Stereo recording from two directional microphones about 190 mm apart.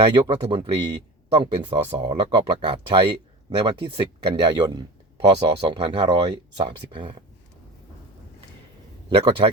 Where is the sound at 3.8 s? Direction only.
25° right (ahead or behind).